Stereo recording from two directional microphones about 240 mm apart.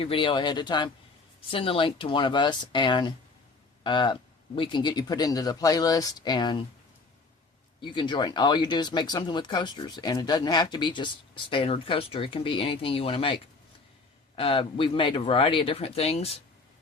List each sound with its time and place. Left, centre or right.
0.0 s speech: left
7.8 s speech: centre